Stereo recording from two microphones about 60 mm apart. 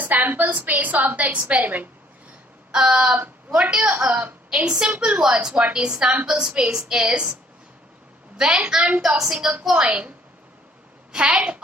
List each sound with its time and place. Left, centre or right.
0.0 s a woman's voice: right
2.7 s a woman's voice: centre
4.6 s a woman's voice: centre
8.4 s a woman's voice: centre
9.0 s a woman's voice: centre
11.1 s a woman's voice: centre